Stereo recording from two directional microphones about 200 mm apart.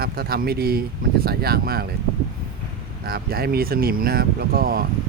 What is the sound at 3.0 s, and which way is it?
Speech, 50° right (ahead or behind).